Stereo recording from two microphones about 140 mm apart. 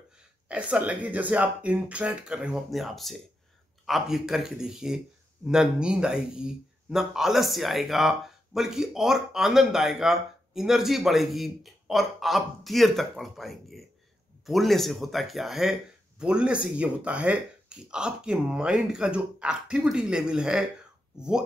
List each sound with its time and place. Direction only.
0.5 s speech: 10° right (ahead or behind)